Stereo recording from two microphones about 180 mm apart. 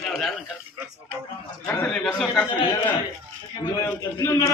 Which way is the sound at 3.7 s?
15° left (ahead or behind).